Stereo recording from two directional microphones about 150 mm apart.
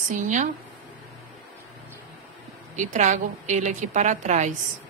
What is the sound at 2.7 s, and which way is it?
A woman's voice, 55° right (ahead or behind).